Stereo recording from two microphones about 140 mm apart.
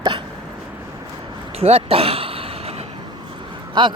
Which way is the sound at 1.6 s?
45° right (ahead or behind).